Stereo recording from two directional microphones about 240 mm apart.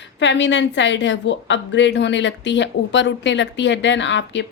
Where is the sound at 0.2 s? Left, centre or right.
Left.